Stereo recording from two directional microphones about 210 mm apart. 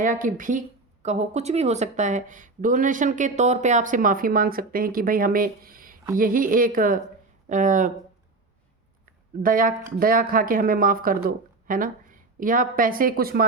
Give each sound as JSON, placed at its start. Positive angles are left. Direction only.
{"t": 0.0, "sound": "speech", "side_deg": -40}
{"t": 9.4, "sound": "speech", "side_deg": -40}